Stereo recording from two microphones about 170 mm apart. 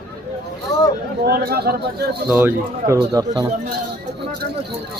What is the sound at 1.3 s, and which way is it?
Speech, 65° right (ahead or behind).